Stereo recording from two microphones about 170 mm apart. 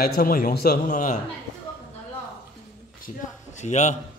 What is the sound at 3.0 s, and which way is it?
Speech, 45° left (ahead or behind).